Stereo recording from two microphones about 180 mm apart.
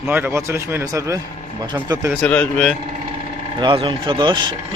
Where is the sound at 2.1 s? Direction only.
5° left (ahead or behind).